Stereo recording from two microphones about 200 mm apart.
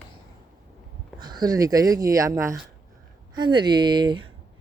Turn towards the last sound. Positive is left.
turn(degrees=-20)  # may be behind; listen again after turning